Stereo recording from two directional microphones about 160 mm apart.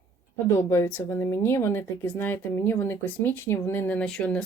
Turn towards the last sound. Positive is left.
turn(degrees=5)  # may be behind; listen again after turning